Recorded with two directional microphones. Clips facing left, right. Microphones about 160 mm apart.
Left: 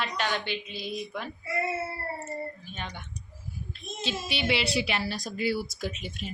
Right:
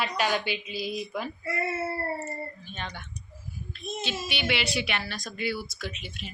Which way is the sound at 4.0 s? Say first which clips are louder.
Left 2 dB; 30° left (ahead or behind).